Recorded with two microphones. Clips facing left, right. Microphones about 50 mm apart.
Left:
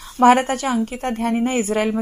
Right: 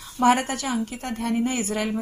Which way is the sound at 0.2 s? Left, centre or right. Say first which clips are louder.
Left 6 dB; left.